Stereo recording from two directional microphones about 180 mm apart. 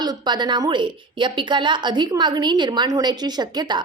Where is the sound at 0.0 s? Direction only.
25° right (ahead or behind).